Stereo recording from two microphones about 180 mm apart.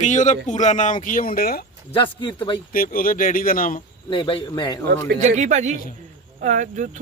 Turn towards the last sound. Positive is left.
turn(degrees=-45)  # may be behind; listen again after turning